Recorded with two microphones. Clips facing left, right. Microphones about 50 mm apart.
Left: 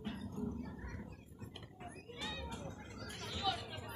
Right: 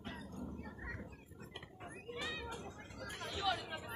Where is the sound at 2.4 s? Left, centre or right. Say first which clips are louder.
Even; centre.